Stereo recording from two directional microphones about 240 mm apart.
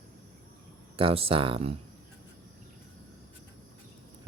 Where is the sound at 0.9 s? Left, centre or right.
Right.